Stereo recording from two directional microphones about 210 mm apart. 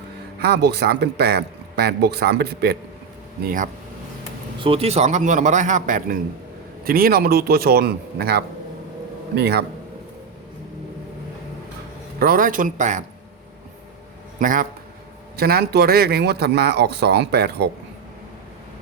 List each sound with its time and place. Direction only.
0.4 s speech: 50° right (ahead or behind)
3.4 s a man's voice: 40° right (ahead or behind)
4.6 s a man's voice: 30° right (ahead or behind); by 9.6 s 50° right (ahead or behind)
12.2 s a man's voice: 40° right (ahead or behind)
14.3 s a man's voice: 40° right (ahead or behind)